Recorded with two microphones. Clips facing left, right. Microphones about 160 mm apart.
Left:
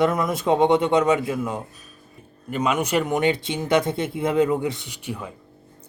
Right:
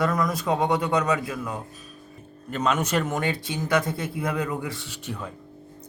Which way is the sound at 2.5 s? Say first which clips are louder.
Left 2 dB; 10° left (ahead or behind).